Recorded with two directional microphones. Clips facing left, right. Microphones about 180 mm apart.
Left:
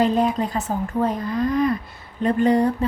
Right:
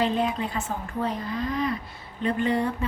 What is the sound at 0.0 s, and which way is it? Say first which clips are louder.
A woman's voice: left 6 dB; 40° left (ahead or behind).